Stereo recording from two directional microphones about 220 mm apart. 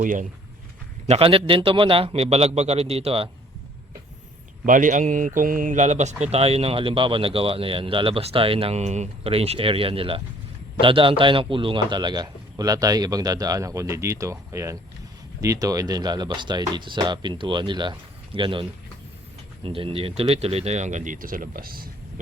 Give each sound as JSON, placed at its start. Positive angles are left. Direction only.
{"t": 0.0, "sound": "speech", "side_deg": -35}
{"t": 1.0, "sound": "speech", "side_deg": -25}
{"t": 4.6, "sound": "a man's voice", "side_deg": -35}
{"t": 19.6, "sound": "speech", "side_deg": -25}